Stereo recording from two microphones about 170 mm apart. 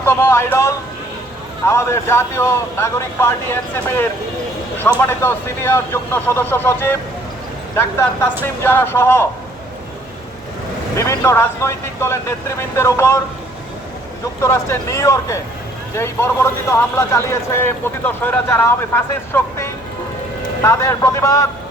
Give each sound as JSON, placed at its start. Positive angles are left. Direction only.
{"t": 0.0, "sound": "speech", "side_deg": 15}
{"t": 10.9, "sound": "speech", "side_deg": 20}
{"t": 14.4, "sound": "speech", "side_deg": 15}